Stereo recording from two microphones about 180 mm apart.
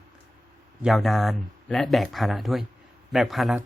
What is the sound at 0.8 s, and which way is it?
Speech, centre (ahead or behind).